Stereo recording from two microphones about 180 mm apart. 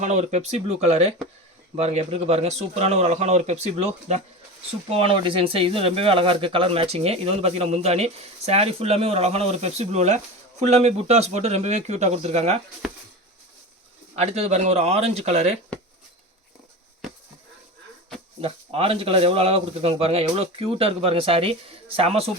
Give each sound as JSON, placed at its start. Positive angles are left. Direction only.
{"t": 0.0, "sound": "speech", "side_deg": -40}
{"t": 14.2, "sound": "speech", "side_deg": -35}
{"t": 18.3, "sound": "speech", "side_deg": -35}